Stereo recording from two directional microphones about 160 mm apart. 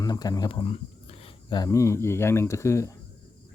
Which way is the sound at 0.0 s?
25° left (ahead or behind).